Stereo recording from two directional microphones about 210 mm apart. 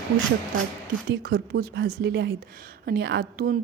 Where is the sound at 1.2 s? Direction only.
50° right (ahead or behind).